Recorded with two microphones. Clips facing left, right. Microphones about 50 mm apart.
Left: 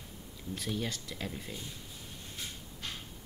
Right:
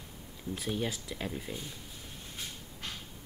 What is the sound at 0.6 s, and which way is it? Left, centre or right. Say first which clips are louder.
Speech: right 2 dB; centre.